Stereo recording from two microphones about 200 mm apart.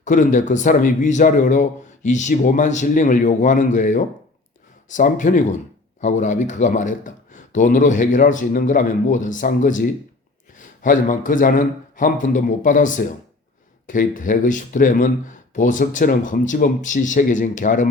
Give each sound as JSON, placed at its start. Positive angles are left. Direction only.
{"t": 0.0, "sound": "speech", "side_deg": 40}